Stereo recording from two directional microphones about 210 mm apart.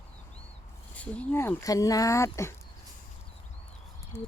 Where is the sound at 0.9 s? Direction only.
10° left (ahead or behind).